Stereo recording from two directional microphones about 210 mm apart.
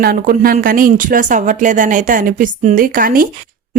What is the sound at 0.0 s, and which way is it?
Speech, 45° right (ahead or behind).